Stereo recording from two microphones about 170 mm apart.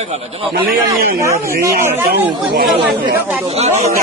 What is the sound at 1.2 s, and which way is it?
Speech, 15° right (ahead or behind).